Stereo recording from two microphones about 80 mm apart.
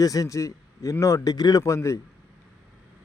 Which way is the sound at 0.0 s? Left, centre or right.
Left.